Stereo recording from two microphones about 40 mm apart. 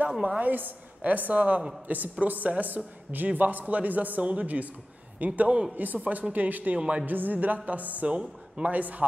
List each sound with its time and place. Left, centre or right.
0.4 s a man's voice: right
6.3 s music: right
6.8 s speech: right
7.1 s music: right
8.1 s speech: right
8.7 s music: right